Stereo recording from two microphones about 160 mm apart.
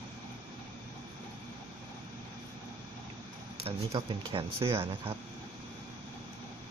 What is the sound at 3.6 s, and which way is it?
Speech, 35° right (ahead or behind).